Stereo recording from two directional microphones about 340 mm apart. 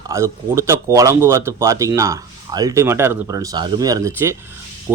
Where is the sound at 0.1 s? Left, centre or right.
Centre.